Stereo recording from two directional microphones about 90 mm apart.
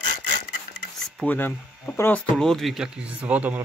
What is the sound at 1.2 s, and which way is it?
Speech, 20° left (ahead or behind).